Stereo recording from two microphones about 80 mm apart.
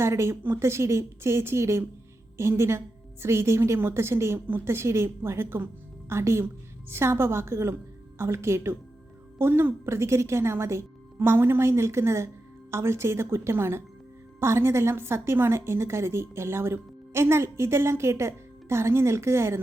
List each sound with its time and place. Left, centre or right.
0.0 s a woman's voice: right